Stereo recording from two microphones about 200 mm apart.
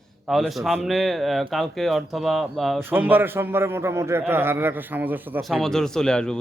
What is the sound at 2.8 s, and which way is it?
A man's voice, 10° right (ahead or behind).